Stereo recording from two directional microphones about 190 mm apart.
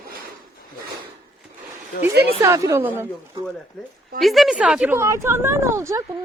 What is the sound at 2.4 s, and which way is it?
Speech, 15° right (ahead or behind).